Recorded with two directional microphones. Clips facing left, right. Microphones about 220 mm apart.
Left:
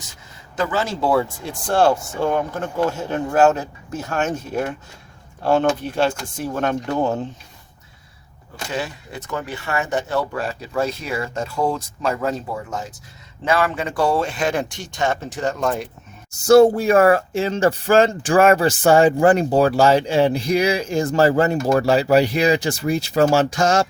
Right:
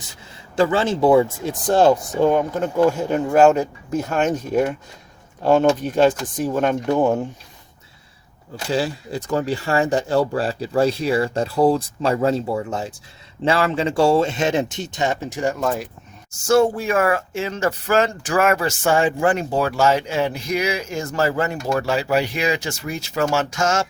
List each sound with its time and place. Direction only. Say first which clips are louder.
0.5 s speech: right 5 dB; 30° right (ahead or behind); by 7.3 s 10° right (ahead or behind)
8.7 s speech: right 6 dB; 30° right (ahead or behind); by 15.9 s centre (ahead or behind)
16.3 s speech: left 5 dB; 35° left (ahead or behind)